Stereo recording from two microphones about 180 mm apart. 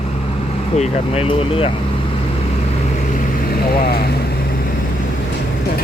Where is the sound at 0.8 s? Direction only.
35° left (ahead or behind).